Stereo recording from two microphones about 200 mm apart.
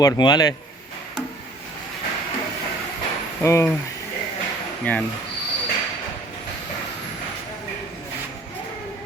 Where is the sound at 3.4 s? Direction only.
15° left (ahead or behind).